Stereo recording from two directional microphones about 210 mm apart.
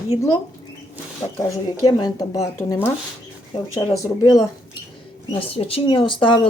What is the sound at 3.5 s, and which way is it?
Speech, 25° left (ahead or behind).